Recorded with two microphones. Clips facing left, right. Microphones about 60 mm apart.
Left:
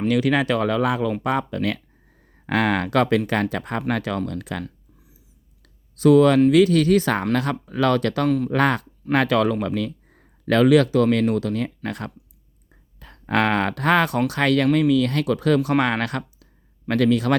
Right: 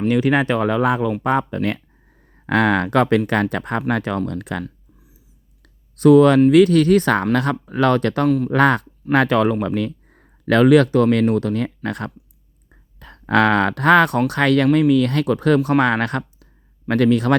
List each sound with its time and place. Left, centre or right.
0.1 s speech: right
2.5 s speech: right
6.0 s speech: right
10.4 s speech: right